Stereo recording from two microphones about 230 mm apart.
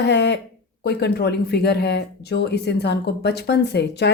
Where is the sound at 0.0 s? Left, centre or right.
Left.